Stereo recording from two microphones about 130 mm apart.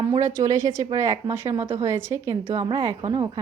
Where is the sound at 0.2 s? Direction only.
20° right (ahead or behind).